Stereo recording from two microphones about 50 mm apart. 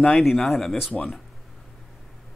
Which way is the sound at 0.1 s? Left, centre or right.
Centre.